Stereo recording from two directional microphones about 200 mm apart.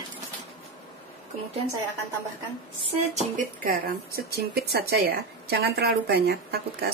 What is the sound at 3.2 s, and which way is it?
Speech, 40° right (ahead or behind).